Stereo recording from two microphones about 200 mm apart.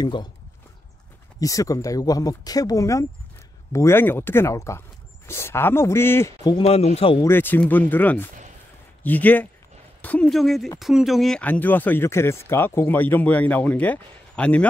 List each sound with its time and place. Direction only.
0.0 s speech: 20° left (ahead or behind)
1.4 s speech: 15° left (ahead or behind)
6.5 s speech: 30° left (ahead or behind)
7.2 s speech: 10° left (ahead or behind)